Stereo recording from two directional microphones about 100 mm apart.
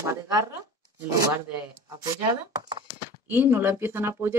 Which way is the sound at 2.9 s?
20° right (ahead or behind).